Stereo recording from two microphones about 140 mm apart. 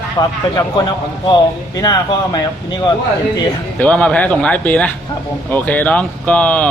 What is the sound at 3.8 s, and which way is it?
Speech, 10° left (ahead or behind).